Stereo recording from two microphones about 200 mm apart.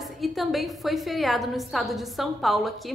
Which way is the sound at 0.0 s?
Centre (ahead or behind).